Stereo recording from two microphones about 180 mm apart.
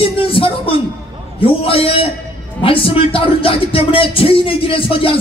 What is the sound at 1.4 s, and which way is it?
A man's voice, 30° left (ahead or behind).